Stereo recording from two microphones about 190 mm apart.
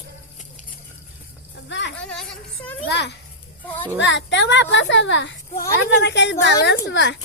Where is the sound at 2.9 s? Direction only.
60° left (ahead or behind).